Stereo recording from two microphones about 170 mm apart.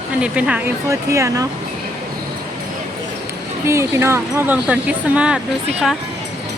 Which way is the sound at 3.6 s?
15° right (ahead or behind).